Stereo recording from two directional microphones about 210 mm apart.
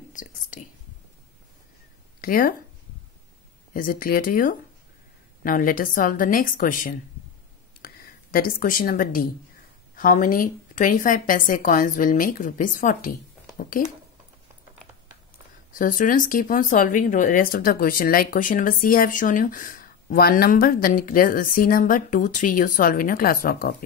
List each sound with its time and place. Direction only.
0.1 s whispering: 40° left (ahead or behind)
2.2 s speech: 45° left (ahead or behind)
3.7 s speech: 45° left (ahead or behind)
15.7 s speech: 40° left (ahead or behind)